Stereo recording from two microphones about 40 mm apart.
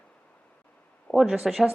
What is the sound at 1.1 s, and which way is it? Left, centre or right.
Speech, centre.